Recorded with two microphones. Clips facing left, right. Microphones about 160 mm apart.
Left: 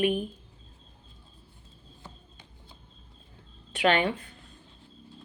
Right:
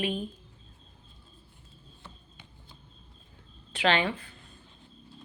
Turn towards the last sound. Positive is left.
turn(degrees=45)  # may be behind; listen again after turning